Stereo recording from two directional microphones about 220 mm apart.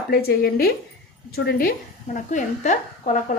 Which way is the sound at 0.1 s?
45° left (ahead or behind).